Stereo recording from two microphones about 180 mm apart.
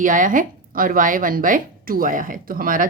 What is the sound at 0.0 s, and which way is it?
A woman's voice, 45° right (ahead or behind).